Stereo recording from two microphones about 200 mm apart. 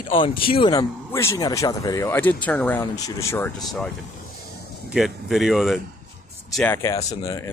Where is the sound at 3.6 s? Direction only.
Centre (ahead or behind).